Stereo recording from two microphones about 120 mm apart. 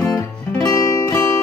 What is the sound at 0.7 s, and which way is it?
Music, 30° left (ahead or behind).